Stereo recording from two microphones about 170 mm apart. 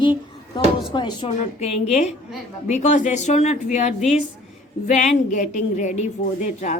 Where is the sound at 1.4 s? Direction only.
40° left (ahead or behind).